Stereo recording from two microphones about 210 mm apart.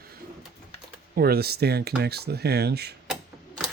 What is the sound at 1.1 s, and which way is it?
Speech, 45° right (ahead or behind).